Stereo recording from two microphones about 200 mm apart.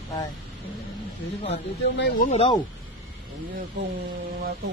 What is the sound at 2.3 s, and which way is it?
Speech, 30° left (ahead or behind).